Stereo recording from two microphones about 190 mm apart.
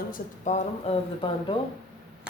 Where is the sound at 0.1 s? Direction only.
40° left (ahead or behind).